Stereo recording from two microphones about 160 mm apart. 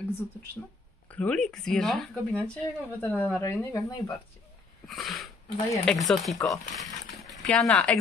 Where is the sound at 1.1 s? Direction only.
5° left (ahead or behind).